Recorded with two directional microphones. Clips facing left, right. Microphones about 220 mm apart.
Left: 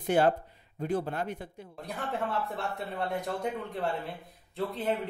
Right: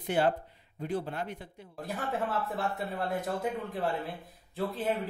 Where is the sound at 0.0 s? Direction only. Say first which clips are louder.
Left 3 dB; 45° left (ahead or behind).